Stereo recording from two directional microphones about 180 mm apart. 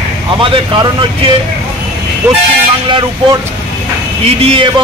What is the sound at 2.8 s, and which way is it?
A man's voice, 25° right (ahead or behind).